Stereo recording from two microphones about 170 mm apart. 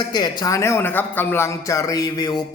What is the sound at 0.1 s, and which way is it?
Speech, 25° left (ahead or behind).